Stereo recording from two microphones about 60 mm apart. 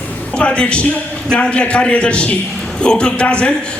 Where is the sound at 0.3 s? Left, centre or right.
Centre.